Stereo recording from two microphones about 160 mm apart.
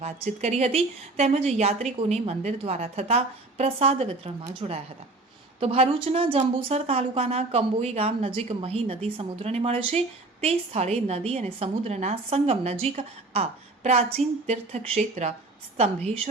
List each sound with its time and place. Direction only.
0.0 s speech: 45° right (ahead or behind)